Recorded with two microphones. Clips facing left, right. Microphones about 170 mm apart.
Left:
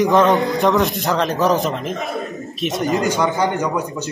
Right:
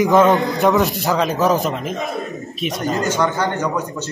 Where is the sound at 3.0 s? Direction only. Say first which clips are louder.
Left 1 dB; 10° left (ahead or behind).